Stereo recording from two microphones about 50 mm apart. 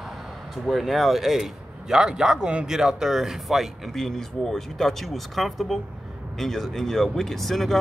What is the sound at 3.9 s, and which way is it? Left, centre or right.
Speech, centre.